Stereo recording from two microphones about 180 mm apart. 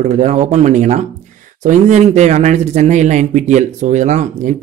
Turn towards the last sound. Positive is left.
turn(degrees=-40)  # may be behind; listen again after turning